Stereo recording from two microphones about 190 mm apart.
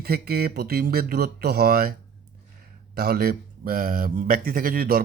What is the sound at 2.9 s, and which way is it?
Speech, 55° right (ahead or behind).